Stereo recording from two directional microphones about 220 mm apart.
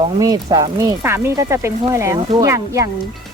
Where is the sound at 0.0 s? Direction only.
15° right (ahead or behind).